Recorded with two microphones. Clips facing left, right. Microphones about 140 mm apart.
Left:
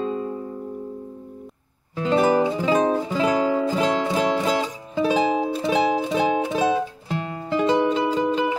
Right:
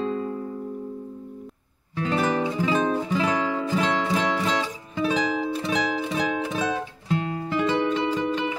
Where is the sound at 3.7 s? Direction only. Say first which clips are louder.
Left 3 dB; 25° left (ahead or behind).